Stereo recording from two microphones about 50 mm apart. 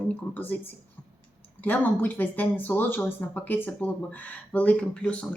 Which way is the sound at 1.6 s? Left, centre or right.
Left.